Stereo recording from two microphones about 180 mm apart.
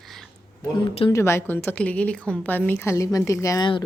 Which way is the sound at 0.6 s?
20° left (ahead or behind).